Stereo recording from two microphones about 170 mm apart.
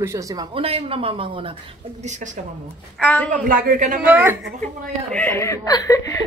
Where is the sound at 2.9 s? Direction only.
10° left (ahead or behind).